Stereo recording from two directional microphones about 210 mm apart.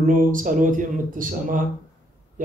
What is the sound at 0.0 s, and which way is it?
Speech, 40° right (ahead or behind).